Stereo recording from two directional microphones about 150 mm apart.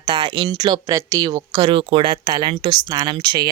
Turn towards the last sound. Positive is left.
turn(degrees=-30)  # may be behind; listen again after turning